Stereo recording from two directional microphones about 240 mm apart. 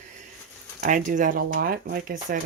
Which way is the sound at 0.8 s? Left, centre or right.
Right.